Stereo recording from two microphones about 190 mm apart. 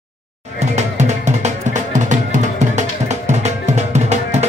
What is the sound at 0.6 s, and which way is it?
Music, 35° right (ahead or behind).